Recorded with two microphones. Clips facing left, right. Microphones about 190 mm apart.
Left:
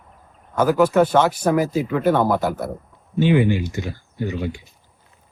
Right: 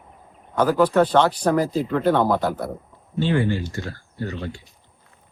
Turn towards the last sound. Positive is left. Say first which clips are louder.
# left 4 dB
turn(degrees=15)  # may be behind; listen again after turning